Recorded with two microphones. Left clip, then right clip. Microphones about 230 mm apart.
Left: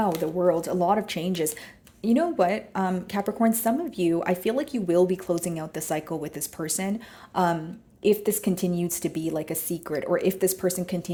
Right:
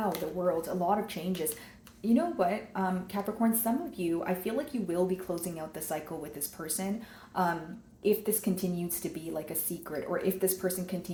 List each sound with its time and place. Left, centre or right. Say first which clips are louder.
0.3 s speech: left 8 dB; left